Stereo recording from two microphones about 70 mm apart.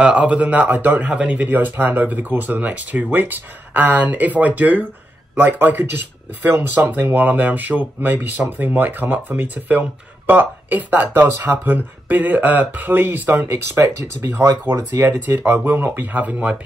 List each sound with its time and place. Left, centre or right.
0.0 s speech: centre
14.7 s speech: right